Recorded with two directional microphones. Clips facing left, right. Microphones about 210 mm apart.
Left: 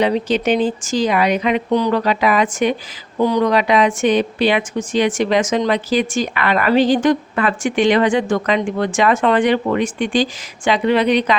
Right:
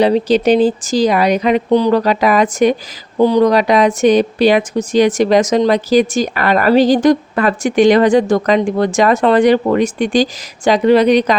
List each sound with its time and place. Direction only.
0.0 s speech: 35° right (ahead or behind)